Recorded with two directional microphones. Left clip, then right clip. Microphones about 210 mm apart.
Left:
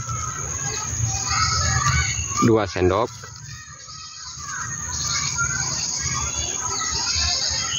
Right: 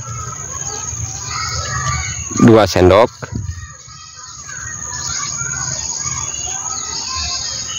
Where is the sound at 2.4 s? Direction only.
50° right (ahead or behind).